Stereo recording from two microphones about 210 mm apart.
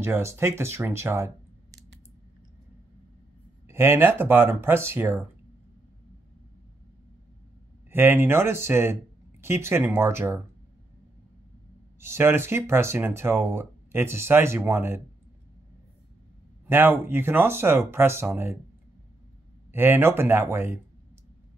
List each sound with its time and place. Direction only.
0.0 s speech: 10° right (ahead or behind)
3.6 s speech: 10° right (ahead or behind)
7.9 s speech: 10° right (ahead or behind)
12.0 s speech: 10° right (ahead or behind)
16.6 s speech: 10° right (ahead or behind)
19.7 s speech: 10° right (ahead or behind)